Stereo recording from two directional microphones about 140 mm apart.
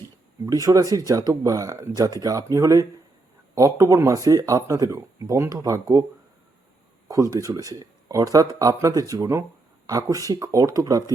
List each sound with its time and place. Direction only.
0.4 s speech: 25° right (ahead or behind)
7.1 s speech: 25° right (ahead or behind)